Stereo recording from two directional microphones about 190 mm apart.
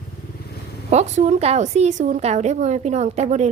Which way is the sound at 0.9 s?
35° right (ahead or behind).